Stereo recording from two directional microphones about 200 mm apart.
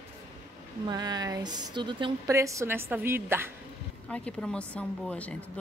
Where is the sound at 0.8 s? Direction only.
20° right (ahead or behind).